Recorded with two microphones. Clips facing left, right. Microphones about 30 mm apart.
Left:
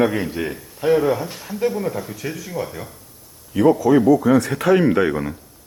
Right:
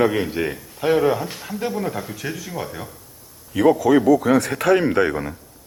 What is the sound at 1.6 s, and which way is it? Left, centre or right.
Speech, right.